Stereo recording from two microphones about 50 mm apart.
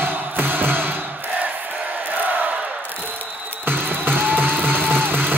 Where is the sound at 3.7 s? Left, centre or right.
Right.